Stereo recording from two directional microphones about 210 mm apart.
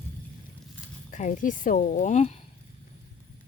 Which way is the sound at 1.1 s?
40° left (ahead or behind).